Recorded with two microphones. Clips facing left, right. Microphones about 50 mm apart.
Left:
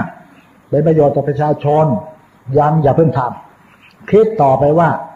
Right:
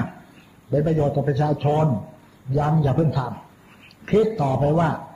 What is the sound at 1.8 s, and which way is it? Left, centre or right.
Speech, left.